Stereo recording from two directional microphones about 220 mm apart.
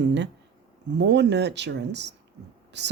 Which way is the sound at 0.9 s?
50° right (ahead or behind).